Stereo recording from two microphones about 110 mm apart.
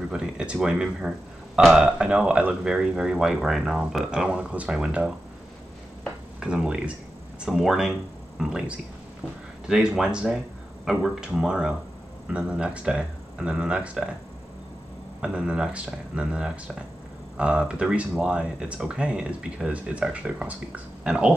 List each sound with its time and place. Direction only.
0.1 s speech: 5° right (ahead or behind)
6.4 s speech: 5° right (ahead or behind)
15.1 s speech: 10° right (ahead or behind)